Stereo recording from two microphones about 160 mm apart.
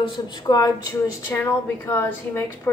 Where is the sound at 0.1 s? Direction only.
25° left (ahead or behind).